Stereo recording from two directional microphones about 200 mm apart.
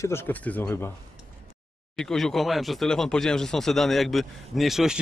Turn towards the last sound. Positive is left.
turn(degrees=0)  # may be behind; listen again after turning